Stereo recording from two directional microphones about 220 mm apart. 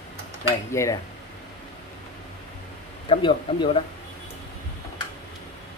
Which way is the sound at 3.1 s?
20° left (ahead or behind).